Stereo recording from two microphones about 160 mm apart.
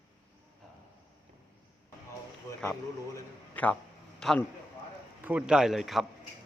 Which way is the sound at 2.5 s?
20° left (ahead or behind).